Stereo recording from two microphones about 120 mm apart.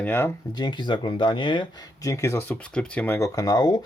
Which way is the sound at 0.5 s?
40° left (ahead or behind).